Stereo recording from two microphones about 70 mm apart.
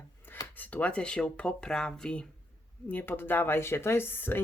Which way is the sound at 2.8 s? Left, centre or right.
Left.